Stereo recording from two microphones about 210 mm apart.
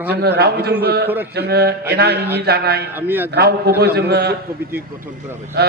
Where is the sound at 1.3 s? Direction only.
50° right (ahead or behind).